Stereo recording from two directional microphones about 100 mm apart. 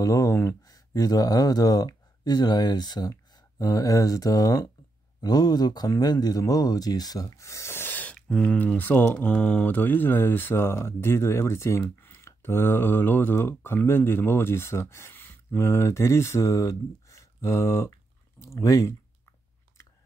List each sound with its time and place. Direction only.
0.0 s speech: 35° left (ahead or behind)